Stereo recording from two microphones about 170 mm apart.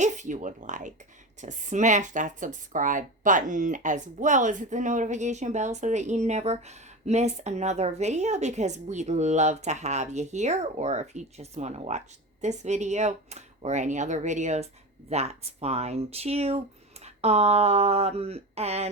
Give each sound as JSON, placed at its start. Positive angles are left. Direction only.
{"t": 0.0, "sound": "speech", "side_deg": -45}